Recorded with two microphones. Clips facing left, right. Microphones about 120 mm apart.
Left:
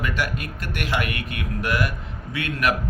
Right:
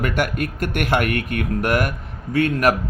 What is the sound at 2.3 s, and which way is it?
Speech, 40° right (ahead or behind).